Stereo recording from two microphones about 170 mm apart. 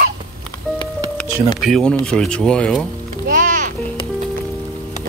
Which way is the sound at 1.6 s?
5° left (ahead or behind).